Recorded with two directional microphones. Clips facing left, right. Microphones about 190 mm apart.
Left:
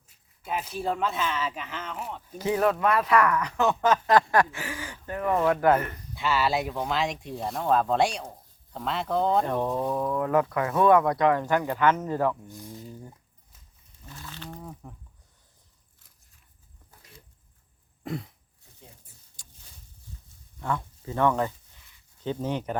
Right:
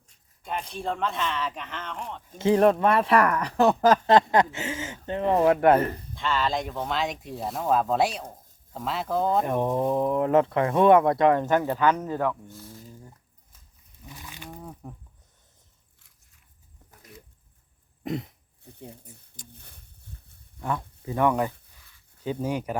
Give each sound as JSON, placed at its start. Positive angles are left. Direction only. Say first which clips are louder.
{"t": 0.1, "sound": "speech", "louder": "left 1 dB", "side_deg": 5}
{"t": 2.4, "sound": "speech", "louder": "right 5 dB", "side_deg": -30}
{"t": 4.1, "sound": "speech", "louder": "right 2 dB", "side_deg": -20}
{"t": 6.1, "sound": "speech", "louder": "left 2 dB", "side_deg": 5}
{"t": 9.5, "sound": "speech", "louder": "right 3 dB", "side_deg": -20}
{"t": 12.0, "sound": "speech", "louder": "left 1 dB", "side_deg": 0}
{"t": 12.5, "sound": "speech", "louder": "left 3 dB", "side_deg": 15}
{"t": 14.0, "sound": "a sound", "louder": "left 1 dB", "side_deg": -15}
{"t": 18.0, "sound": "throat clearing", "louder": "right 3 dB", "side_deg": -20}
{"t": 19.1, "sound": "a sound", "louder": "right 11 dB", "side_deg": -20}
{"t": 19.5, "sound": "a sound", "louder": "right 3 dB", "side_deg": -60}
{"t": 20.6, "sound": "speech", "louder": "even", "side_deg": -15}